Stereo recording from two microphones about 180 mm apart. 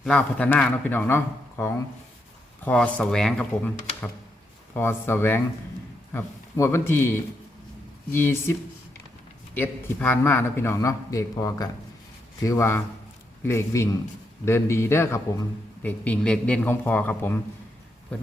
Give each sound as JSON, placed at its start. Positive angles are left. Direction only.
{"t": 0.0, "sound": "a man's voice", "side_deg": 5}
{"t": 8.1, "sound": "a man's voice", "side_deg": 15}
{"t": 9.6, "sound": "a man's voice", "side_deg": 10}